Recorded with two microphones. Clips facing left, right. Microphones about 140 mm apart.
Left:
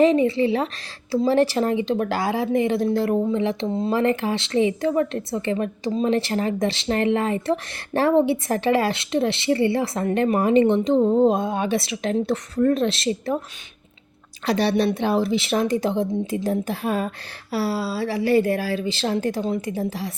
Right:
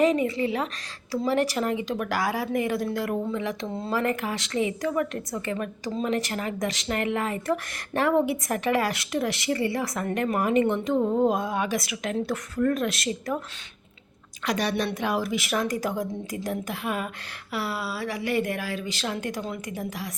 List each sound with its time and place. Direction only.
0.0 s a woman's voice: 30° left (ahead or behind)
14.4 s a woman's voice: 30° left (ahead or behind)